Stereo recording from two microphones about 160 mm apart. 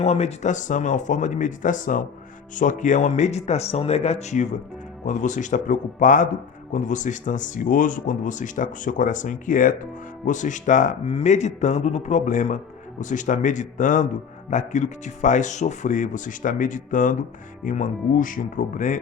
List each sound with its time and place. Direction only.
0.0 s speech: 40° left (ahead or behind)